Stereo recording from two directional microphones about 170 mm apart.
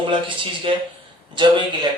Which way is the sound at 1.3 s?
30° right (ahead or behind).